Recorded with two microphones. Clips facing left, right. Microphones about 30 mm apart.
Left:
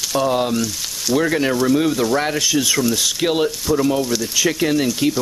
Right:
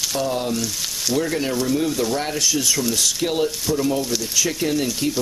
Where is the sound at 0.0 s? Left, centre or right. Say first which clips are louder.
Left 4 dB; centre.